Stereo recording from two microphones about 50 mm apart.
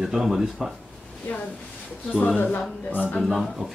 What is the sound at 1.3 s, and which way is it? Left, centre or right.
Speech, left.